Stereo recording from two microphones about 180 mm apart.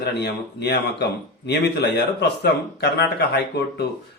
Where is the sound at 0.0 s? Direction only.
65° left (ahead or behind).